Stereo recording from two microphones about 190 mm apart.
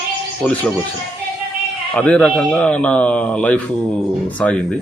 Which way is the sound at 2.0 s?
5° left (ahead or behind).